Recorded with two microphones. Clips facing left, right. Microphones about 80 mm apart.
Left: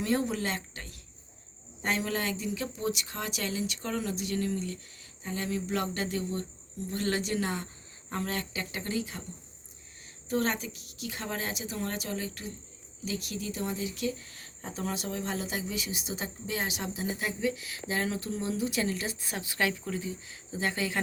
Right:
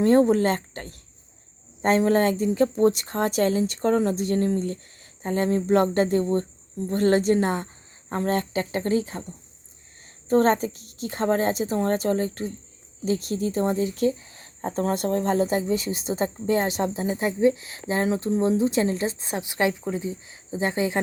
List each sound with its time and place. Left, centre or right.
0.0 s speech: right
10.2 s speech: right
14.2 s cricket: right
14.6 s speech: right